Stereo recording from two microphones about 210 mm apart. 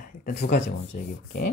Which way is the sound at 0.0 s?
40° left (ahead or behind).